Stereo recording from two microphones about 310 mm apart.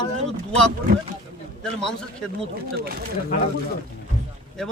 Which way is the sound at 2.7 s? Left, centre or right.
Right.